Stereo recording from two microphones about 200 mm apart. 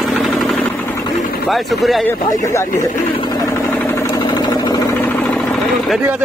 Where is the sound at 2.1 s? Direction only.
15° left (ahead or behind).